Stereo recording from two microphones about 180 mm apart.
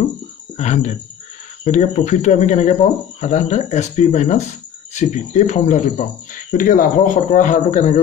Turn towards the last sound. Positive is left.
turn(degrees=45)  # may be behind; listen again after turning